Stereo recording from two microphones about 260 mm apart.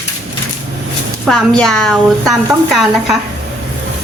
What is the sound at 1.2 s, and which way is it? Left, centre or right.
A woman's voice, centre.